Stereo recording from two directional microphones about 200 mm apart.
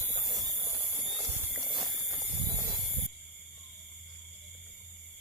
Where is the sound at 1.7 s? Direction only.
Centre (ahead or behind).